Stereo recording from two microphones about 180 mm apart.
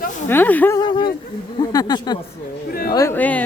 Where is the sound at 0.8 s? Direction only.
25° left (ahead or behind).